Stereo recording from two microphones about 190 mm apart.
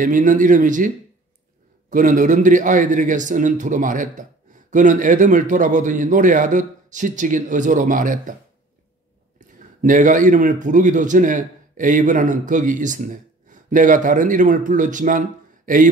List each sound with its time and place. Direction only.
0.0 s a man's voice: 45° right (ahead or behind)
9.8 s a man's voice: 45° right (ahead or behind)